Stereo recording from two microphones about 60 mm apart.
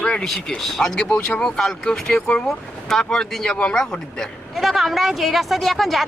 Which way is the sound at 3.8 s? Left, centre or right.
Centre.